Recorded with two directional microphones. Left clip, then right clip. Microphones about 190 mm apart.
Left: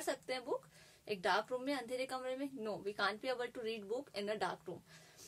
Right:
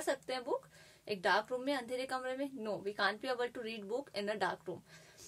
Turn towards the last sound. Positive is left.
turn(degrees=-20)  # may be behind; listen again after turning